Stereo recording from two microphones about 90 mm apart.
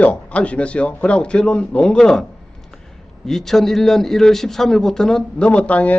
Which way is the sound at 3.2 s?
5° left (ahead or behind).